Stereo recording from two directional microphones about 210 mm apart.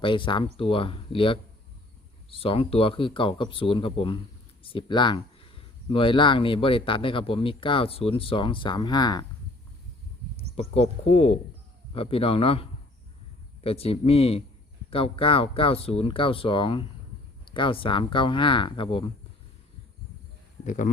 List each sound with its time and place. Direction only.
0.0 s speech: 25° left (ahead or behind)
10.5 s speech: 30° left (ahead or behind)
13.7 s speech: 30° left (ahead or behind)
20.7 s speech: 35° left (ahead or behind)